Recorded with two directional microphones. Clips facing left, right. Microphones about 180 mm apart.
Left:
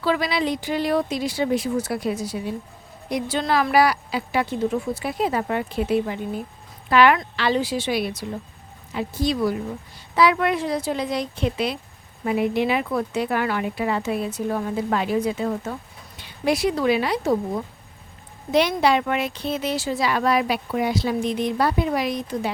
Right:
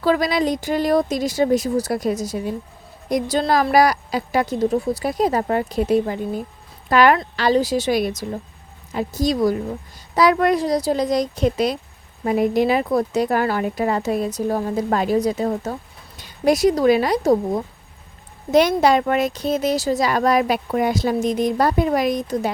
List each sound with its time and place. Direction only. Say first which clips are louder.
0.0 s speech: right 4 dB; 45° right (ahead or behind)